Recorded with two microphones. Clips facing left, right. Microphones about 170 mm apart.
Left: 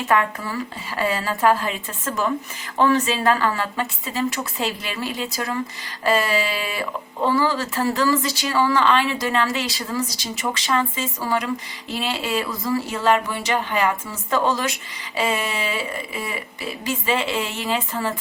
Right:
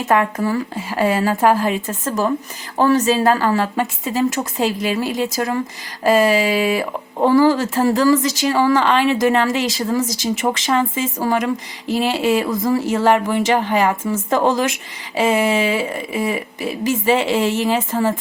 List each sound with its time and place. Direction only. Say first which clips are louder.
0.0 s speech: right 4 dB; 45° right (ahead or behind)